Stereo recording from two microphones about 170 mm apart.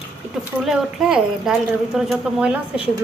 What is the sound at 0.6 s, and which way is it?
Speech, 5° right (ahead or behind).